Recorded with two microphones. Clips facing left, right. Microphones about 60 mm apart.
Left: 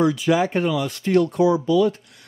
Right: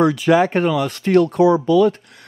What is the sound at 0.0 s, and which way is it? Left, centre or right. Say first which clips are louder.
Speech: right 4 dB; right.